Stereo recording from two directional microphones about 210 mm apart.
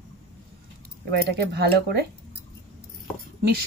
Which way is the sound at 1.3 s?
50° right (ahead or behind).